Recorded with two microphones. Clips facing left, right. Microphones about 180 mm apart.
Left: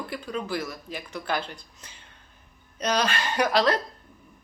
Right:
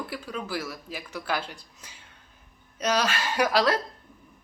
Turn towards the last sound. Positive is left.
turn(degrees=-5)  # may be behind; listen again after turning